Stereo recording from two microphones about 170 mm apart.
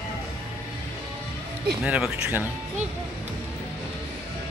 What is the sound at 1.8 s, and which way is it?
Speech, 5° right (ahead or behind).